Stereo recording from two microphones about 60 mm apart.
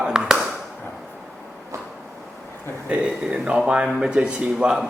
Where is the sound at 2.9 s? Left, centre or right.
Centre.